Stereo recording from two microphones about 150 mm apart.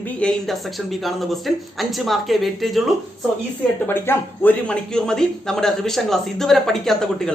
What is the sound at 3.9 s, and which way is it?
Speech, 15° left (ahead or behind).